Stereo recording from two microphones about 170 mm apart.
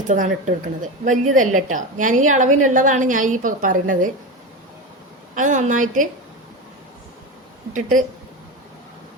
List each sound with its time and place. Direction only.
0.1 s a woman's voice: 45° right (ahead or behind)
5.3 s a woman's voice: 50° right (ahead or behind)
7.7 s a woman's voice: 50° right (ahead or behind)